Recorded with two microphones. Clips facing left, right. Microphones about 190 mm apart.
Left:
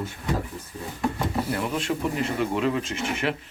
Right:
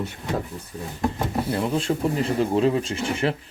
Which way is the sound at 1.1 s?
25° right (ahead or behind).